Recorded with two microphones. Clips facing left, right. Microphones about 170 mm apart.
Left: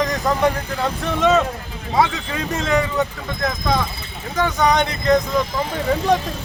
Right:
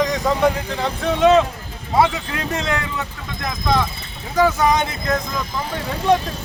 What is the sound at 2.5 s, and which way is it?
Speech, centre (ahead or behind).